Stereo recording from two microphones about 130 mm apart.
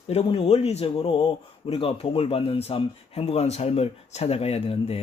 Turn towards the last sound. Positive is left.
turn(degrees=50)  # may be behind; listen again after turning